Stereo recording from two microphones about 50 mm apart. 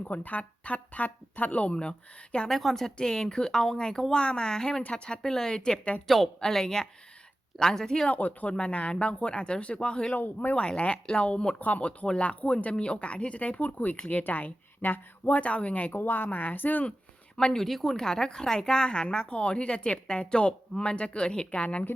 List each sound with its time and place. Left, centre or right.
0.0 s a woman's voice: left
2.5 s speech: centre
6.1 s speech: centre
8.1 s a woman's voice: left
10.2 s speech: left
10.5 s a woman's voice: left
15.2 s a woman's voice: left
15.9 s speech: left
17.3 s speech: centre
17.7 s a woman's voice: centre; by 21.8 s left